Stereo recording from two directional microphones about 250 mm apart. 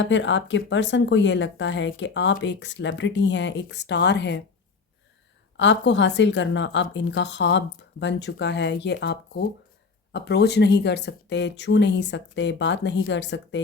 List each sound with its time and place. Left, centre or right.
0.0 s speech: left
5.5 s speech: left